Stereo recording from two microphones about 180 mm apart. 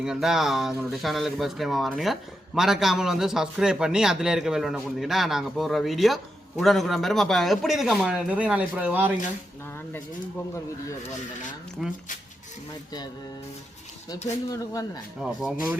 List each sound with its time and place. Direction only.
0.0 s a man's voice: 5° right (ahead or behind)
11.8 s a man's voice: centre (ahead or behind)
14.5 s speech: 20° left (ahead or behind)
15.2 s a man's voice: 5° right (ahead or behind)